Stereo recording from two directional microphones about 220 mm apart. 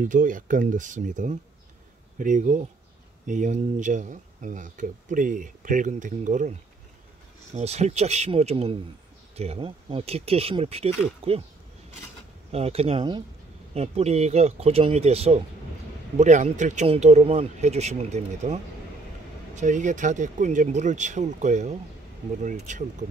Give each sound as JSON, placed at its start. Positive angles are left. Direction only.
{"t": 0.0, "sound": "speech", "side_deg": -35}
{"t": 7.5, "sound": "speech", "side_deg": -30}
{"t": 12.4, "sound": "speech", "side_deg": -25}